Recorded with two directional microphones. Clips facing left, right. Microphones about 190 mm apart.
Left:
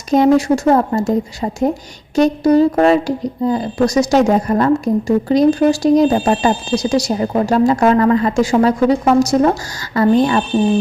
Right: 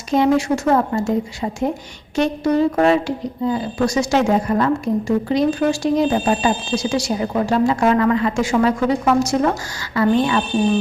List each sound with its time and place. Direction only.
0.1 s speech: 40° left (ahead or behind)